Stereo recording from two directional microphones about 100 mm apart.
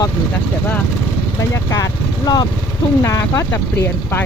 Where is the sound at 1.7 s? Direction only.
40° left (ahead or behind).